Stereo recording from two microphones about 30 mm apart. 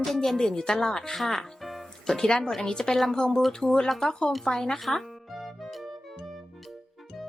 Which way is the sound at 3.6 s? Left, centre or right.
Centre.